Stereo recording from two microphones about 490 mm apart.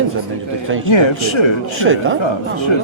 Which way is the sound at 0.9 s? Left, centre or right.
Left.